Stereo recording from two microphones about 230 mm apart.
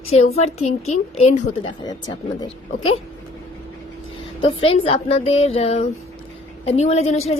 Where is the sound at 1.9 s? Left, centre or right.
Centre.